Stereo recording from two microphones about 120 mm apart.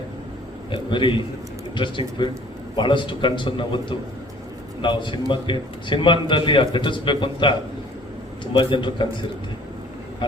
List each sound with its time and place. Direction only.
0.7 s a man's voice: 45° left (ahead or behind)
8.5 s a man's voice: 40° left (ahead or behind)